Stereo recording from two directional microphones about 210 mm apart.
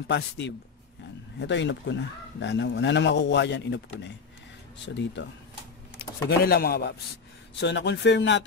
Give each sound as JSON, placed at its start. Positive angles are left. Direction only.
{"t": 0.4, "sound": "a man's voice", "side_deg": 55}
{"t": 6.4, "sound": "chopping", "side_deg": 45}
{"t": 7.6, "sound": "a man's voice", "side_deg": 55}